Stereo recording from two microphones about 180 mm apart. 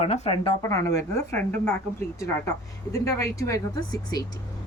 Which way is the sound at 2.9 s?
15° left (ahead or behind).